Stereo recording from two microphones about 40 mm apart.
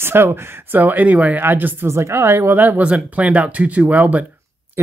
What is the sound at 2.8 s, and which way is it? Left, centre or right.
Speech, right.